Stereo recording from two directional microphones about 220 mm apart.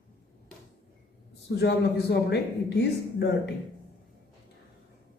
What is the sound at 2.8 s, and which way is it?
Speech, 50° left (ahead or behind).